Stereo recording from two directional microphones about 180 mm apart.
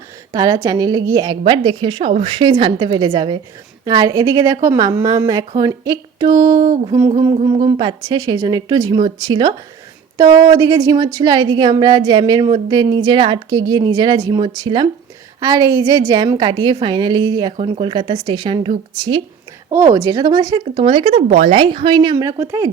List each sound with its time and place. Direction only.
0.3 s a woman's voice: 20° right (ahead or behind)
19.7 s a woman's voice: 15° right (ahead or behind)